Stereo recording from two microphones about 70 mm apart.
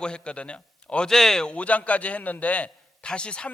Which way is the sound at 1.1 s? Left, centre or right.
Centre.